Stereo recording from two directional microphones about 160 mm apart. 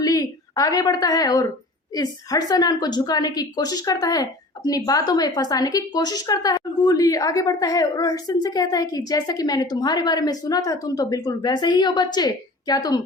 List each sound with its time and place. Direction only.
0.0 s a woman's voice: 20° left (ahead or behind)